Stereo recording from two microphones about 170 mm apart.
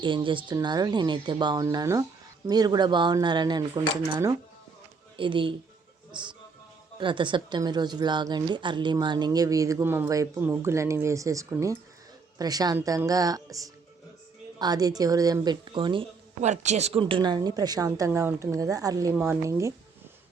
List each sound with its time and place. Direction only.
0.0 s a woman's voice: 30° right (ahead or behind)
6.1 s music: 25° right (ahead or behind)
7.0 s a woman's voice: 30° right (ahead or behind)
16.4 s a woman's voice: 40° right (ahead or behind); by 19.7 s 15° right (ahead or behind)